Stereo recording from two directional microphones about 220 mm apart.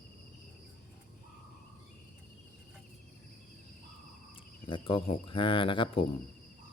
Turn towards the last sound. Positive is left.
turn(degrees=25)  # may be behind; listen again after turning